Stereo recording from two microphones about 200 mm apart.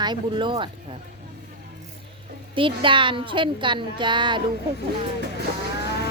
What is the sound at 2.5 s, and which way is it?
Child singing, 25° right (ahead or behind).